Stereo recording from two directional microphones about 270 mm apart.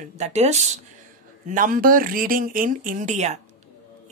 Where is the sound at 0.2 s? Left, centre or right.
Right.